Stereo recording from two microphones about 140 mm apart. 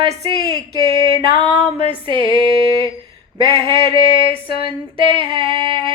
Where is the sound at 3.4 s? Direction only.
25° left (ahead or behind).